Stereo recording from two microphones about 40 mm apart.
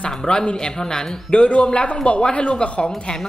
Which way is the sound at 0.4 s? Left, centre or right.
Centre.